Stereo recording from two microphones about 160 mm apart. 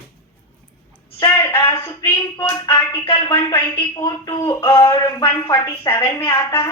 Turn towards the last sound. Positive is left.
turn(degrees=15)  # may be behind; listen again after turning